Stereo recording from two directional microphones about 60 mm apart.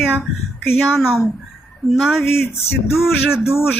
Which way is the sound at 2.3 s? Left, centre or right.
Left.